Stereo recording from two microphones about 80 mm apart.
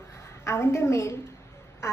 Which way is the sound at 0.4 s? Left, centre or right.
Left.